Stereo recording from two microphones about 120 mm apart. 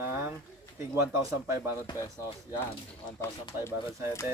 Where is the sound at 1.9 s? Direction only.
35° left (ahead or behind).